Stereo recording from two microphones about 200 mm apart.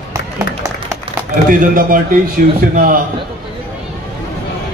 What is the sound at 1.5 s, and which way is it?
A man's voice, 45° right (ahead or behind).